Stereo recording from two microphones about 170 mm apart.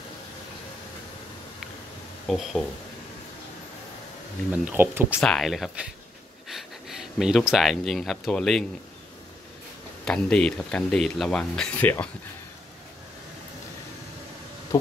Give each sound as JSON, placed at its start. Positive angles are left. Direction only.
{"t": 2.2, "sound": "speech", "side_deg": 0}
{"t": 4.5, "sound": "speech", "side_deg": -10}
{"t": 5.2, "sound": "speech", "side_deg": 0}
{"t": 10.0, "sound": "speech", "side_deg": 5}